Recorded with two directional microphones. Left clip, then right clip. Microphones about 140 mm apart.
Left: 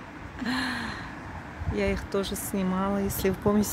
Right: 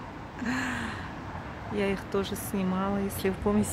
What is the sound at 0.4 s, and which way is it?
Gasp, 25° left (ahead or behind).